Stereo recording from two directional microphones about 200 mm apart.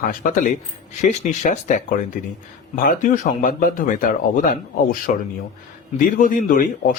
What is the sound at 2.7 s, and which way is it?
Speech, 40° left (ahead or behind).